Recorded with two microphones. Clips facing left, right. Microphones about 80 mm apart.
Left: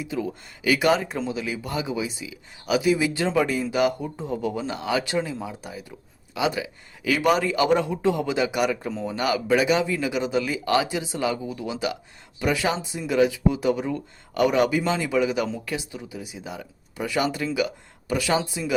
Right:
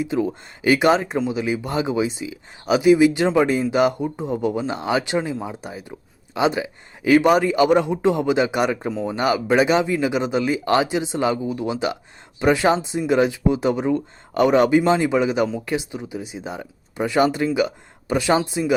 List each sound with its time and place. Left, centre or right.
0.0 s speech: right